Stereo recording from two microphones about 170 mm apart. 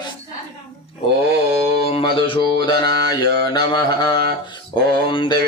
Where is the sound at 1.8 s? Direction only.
35° left (ahead or behind).